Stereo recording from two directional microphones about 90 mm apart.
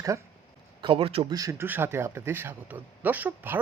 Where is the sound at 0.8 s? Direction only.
85° right.